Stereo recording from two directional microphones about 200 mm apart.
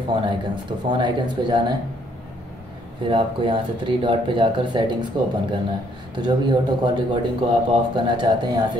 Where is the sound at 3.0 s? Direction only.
25° right (ahead or behind).